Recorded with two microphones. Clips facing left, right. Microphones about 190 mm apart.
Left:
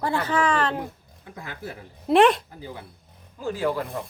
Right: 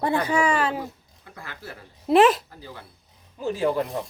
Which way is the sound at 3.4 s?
20° right (ahead or behind).